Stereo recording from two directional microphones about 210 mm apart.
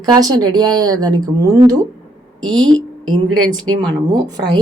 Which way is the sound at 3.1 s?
90° right.